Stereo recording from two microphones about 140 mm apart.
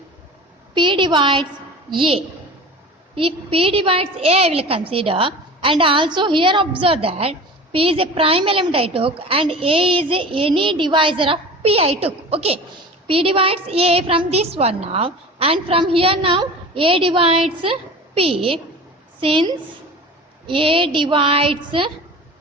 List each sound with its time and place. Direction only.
0.7 s a woman's voice: 35° right (ahead or behind)